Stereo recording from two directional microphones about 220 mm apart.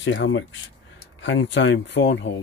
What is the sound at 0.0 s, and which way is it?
Speech, 55° left (ahead or behind).